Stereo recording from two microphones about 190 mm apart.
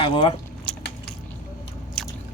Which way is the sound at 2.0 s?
5° left (ahead or behind).